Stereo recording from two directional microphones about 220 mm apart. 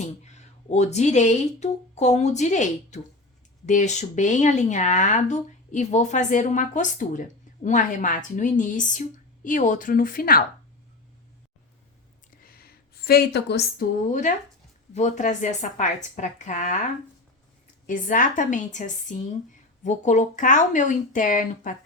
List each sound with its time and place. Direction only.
0.0 s speech: 30° left (ahead or behind)
12.4 s a sound: 45° left (ahead or behind)
14.1 s speech: 35° left (ahead or behind)
17.8 s speech: 35° left (ahead or behind)